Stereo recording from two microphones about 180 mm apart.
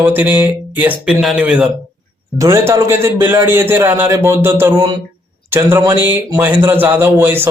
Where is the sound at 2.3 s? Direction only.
15° right (ahead or behind).